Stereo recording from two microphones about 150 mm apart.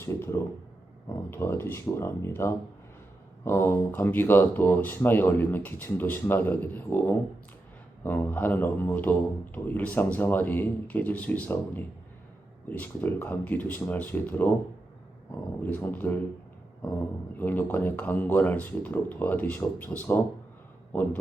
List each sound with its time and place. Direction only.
0.0 s speech: 20° left (ahead or behind)
15.6 s speech: 10° left (ahead or behind)
17.3 s speech: 10° left (ahead or behind)